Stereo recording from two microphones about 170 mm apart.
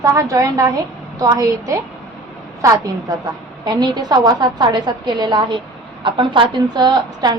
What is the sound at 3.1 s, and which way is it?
A woman's voice, 25° right (ahead or behind).